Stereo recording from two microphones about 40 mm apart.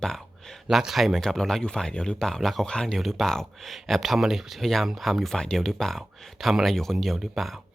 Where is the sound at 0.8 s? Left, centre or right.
Centre.